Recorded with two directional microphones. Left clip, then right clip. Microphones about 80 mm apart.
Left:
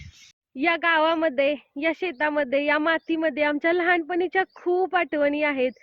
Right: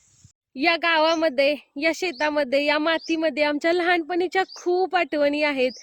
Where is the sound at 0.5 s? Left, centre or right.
Right.